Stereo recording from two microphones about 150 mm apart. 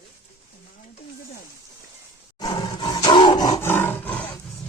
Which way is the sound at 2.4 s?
30° left (ahead or behind).